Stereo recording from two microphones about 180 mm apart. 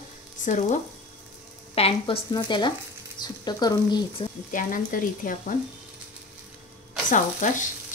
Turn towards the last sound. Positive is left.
turn(degrees=45)  # may be behind; listen again after turning